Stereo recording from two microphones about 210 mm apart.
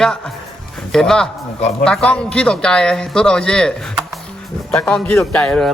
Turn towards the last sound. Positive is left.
turn(degrees=5)  # may be behind; listen again after turning